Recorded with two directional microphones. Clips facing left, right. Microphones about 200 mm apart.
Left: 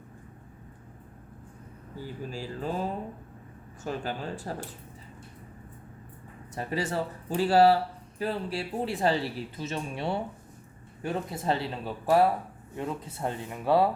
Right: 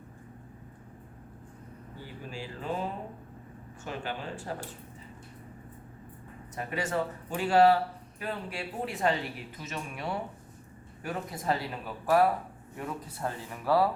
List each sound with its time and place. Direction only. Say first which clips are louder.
2.0 s speech: left 5 dB; 40° left (ahead or behind)
3.8 s speech: left 3 dB; 40° left (ahead or behind)
6.5 s a man's voice: left 2 dB; 30° left (ahead or behind)